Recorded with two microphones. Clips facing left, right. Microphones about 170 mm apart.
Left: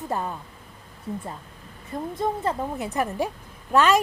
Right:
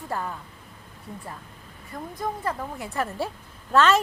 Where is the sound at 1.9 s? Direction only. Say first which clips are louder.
Left 5 dB; 25° left (ahead or behind).